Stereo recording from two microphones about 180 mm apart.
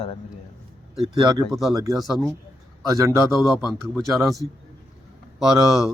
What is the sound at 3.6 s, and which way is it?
Speech, centre (ahead or behind).